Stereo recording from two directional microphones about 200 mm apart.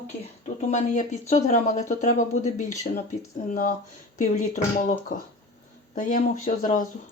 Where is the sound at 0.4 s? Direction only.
35° left (ahead or behind).